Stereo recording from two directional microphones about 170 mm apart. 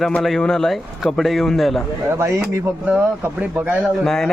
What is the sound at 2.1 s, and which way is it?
A man's voice, 15° right (ahead or behind).